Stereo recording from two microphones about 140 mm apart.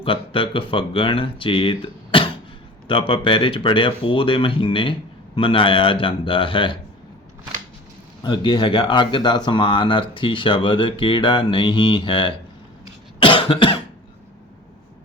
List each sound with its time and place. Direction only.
0.0 s speech: 40° left (ahead or behind)
8.2 s speech: 30° left (ahead or behind)
13.2 s cough: 40° left (ahead or behind)